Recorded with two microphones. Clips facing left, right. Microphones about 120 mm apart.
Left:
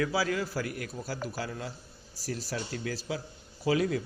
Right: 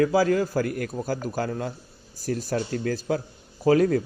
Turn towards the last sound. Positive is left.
turn(degrees=-45)  # may be behind; listen again after turning